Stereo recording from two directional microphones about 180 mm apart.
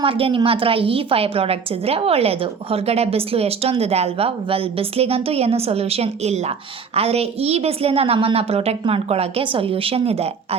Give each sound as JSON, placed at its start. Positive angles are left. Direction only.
{"t": 0.0, "sound": "a woman's voice", "side_deg": -30}